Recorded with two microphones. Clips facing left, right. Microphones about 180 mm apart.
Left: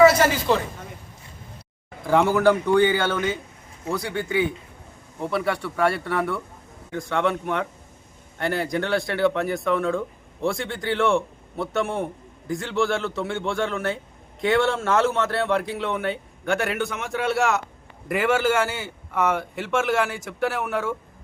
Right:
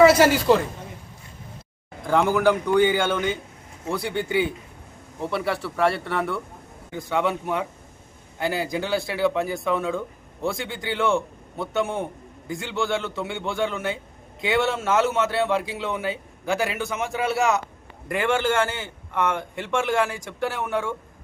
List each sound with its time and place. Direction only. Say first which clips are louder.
0.5 s a man's voice: right 4 dB; centre (ahead or behind)
2.0 s a man's voice: left 1 dB; centre (ahead or behind)
2.7 s speech: even; 15° right (ahead or behind)
4.1 s a man's voice: right 1 dB; 30° right (ahead or behind)
5.2 s a man's voice: left 1 dB; centre (ahead or behind)